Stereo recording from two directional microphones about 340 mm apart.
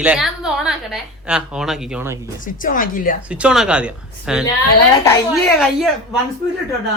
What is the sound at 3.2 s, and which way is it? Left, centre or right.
Speech, centre.